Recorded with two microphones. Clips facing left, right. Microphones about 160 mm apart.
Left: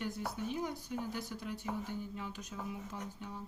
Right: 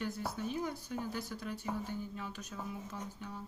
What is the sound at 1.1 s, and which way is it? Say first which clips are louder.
Speech: right 1 dB; 15° left (ahead or behind).